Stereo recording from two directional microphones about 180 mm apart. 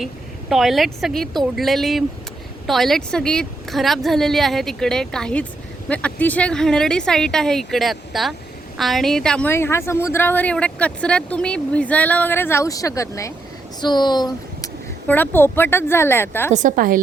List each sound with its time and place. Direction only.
0.5 s a woman's voice: centre (ahead or behind); by 14.7 s 25° left (ahead or behind)
15.0 s a woman's voice: 10° left (ahead or behind)
16.5 s a woman's voice: 45° right (ahead or behind)